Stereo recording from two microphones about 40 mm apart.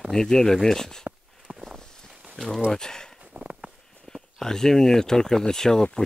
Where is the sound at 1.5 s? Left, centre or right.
Right.